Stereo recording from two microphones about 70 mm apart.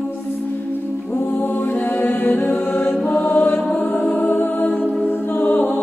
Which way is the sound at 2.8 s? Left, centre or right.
Left.